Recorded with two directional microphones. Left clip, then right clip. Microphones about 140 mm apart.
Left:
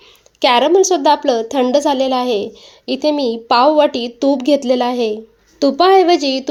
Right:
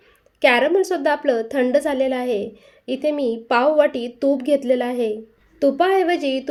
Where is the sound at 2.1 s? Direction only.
25° right (ahead or behind).